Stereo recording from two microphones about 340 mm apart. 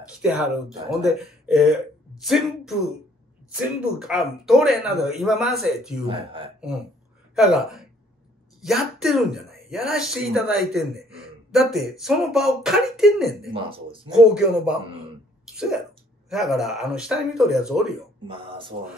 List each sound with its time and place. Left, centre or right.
0.2 s speech: centre
4.0 s speech: centre
6.0 s speech: centre
7.3 s speech: centre
13.5 s speech: centre
14.1 s speech: centre
18.2 s speech: centre